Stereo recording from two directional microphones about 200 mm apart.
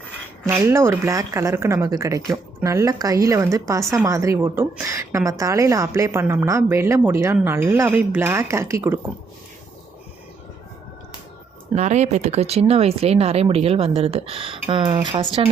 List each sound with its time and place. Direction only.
0.4 s a woman's voice: 15° right (ahead or behind)
11.7 s speech: 35° right (ahead or behind)